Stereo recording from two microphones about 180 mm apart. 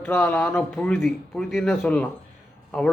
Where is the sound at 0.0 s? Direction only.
5° left (ahead or behind).